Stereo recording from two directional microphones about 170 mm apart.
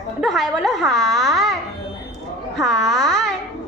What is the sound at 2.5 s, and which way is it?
Speech, centre (ahead or behind).